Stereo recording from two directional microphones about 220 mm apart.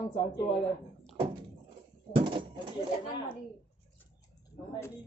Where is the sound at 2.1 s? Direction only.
25° right (ahead or behind).